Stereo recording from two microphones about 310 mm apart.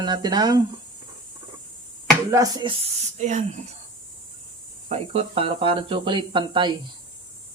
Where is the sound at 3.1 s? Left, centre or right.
Right.